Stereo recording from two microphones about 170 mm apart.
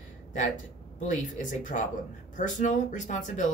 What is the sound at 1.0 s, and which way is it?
A woman's voice, 45° left (ahead or behind).